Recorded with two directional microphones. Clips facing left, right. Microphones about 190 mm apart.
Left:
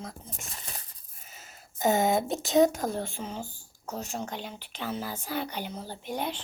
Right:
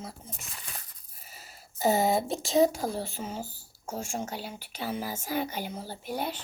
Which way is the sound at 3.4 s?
40° right (ahead or behind).